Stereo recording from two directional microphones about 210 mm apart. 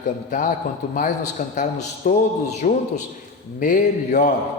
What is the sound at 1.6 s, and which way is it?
Speech, 35° left (ahead or behind).